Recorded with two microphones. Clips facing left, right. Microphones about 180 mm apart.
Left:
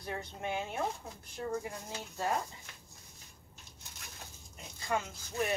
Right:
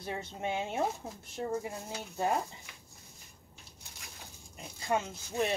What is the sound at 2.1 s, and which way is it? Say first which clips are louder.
Speech: right 3 dB; 15° right (ahead or behind).